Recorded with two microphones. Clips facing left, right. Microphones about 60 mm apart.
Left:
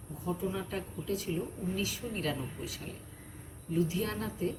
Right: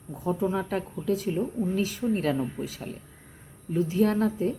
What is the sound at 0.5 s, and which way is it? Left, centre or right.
A woman's voice, right.